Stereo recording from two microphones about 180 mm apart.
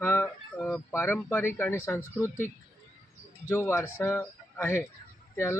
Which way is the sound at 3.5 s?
15° left (ahead or behind).